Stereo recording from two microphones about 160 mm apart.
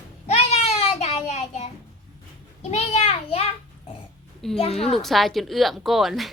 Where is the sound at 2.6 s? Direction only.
45° left (ahead or behind).